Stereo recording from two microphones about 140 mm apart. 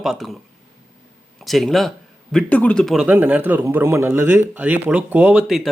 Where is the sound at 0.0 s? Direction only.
Centre (ahead or behind).